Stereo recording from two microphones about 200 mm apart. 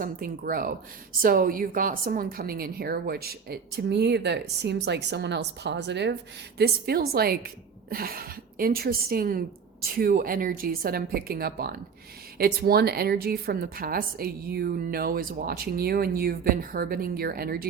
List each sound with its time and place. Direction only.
0.0 s a woman's voice: 45° right (ahead or behind)